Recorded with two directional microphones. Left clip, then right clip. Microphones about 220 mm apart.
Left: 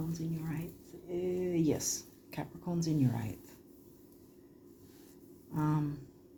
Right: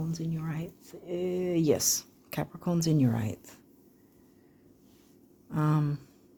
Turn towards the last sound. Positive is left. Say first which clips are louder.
# right 4 dB
turn(degrees=-50)  # may be behind; listen again after turning